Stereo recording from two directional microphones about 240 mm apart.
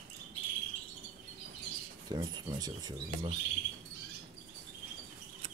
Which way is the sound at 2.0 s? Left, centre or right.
Centre.